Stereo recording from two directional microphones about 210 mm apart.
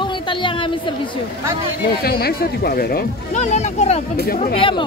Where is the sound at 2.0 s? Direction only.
45° left (ahead or behind).